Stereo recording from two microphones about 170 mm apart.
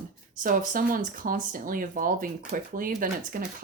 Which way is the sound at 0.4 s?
50° right (ahead or behind).